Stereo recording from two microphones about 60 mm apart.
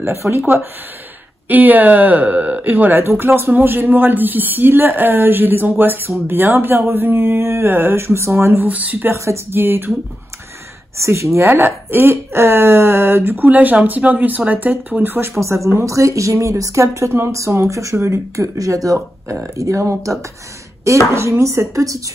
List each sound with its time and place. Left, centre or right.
0.0 s speech: right
1.5 s speech: right
8.5 s speech: right
9.1 s speech: right
9.6 s speech: right
11.0 s speech: right
11.3 s speech: right